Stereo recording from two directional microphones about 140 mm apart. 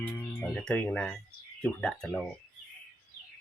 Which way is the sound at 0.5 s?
5° left (ahead or behind).